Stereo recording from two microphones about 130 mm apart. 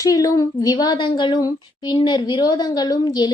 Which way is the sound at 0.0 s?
25° left (ahead or behind).